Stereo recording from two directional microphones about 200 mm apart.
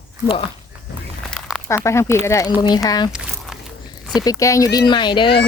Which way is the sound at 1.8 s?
15° left (ahead or behind).